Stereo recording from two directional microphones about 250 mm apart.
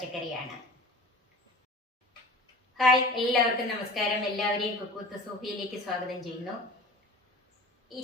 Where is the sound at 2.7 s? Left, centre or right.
Centre.